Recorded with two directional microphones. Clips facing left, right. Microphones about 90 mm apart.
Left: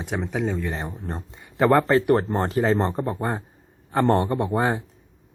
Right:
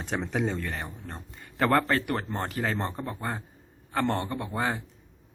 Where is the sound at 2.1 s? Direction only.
35° left (ahead or behind).